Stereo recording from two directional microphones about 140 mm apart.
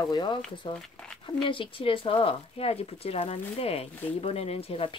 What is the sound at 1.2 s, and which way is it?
Speech, 35° left (ahead or behind).